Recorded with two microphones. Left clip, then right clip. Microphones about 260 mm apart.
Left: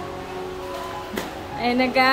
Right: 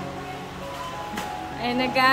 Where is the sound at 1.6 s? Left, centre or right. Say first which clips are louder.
Left 4 dB; centre.